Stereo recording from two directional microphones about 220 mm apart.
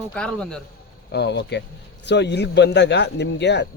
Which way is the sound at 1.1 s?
50° left (ahead or behind).